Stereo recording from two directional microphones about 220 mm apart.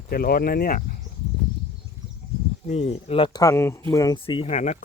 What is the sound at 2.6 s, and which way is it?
Speech, 30° left (ahead or behind).